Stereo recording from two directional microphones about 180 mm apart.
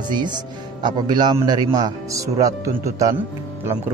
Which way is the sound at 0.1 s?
25° right (ahead or behind).